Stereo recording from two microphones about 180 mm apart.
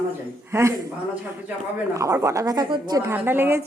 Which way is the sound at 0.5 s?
15° right (ahead or behind).